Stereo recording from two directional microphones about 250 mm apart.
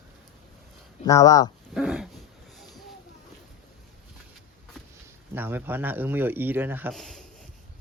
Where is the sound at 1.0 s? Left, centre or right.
Centre.